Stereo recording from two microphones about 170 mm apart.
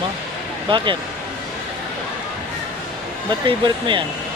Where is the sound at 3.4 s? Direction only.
30° right (ahead or behind).